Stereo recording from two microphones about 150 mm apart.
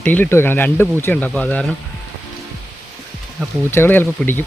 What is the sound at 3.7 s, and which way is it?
Speech, 15° left (ahead or behind).